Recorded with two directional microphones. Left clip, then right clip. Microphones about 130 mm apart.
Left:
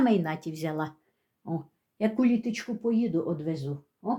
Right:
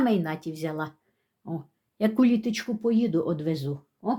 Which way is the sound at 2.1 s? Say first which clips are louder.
Right 4 dB; 40° right (ahead or behind).